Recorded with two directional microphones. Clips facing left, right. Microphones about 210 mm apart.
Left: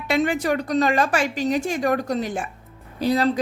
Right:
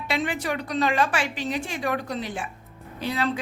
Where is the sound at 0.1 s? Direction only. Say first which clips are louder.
Left 6 dB; 45° left (ahead or behind).